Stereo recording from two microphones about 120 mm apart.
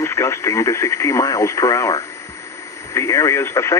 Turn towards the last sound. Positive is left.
turn(degrees=25)  # may be behind; listen again after turning